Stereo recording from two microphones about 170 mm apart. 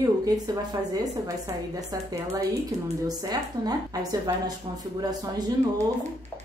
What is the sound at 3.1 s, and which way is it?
A woman's voice, 20° right (ahead or behind).